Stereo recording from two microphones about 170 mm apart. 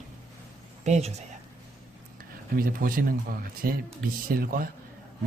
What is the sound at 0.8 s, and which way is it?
Speech, 40° right (ahead or behind).